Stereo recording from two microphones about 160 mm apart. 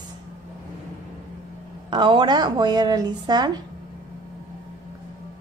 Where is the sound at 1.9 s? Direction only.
30° right (ahead or behind).